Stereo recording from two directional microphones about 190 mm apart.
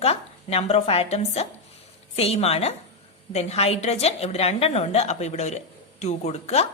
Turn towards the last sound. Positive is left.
turn(degrees=35)  # may be behind; listen again after turning